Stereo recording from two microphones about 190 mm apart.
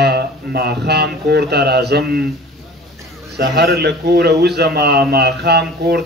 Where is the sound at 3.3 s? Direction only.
60° right (ahead or behind).